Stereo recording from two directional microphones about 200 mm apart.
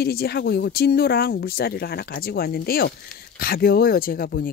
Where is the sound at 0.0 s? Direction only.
50° left (ahead or behind).